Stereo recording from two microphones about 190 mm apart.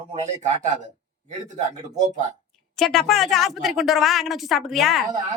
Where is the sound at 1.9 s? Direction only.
40° right (ahead or behind).